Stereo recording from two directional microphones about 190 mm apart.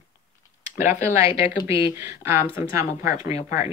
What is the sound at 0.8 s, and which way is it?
Speech, 10° right (ahead or behind).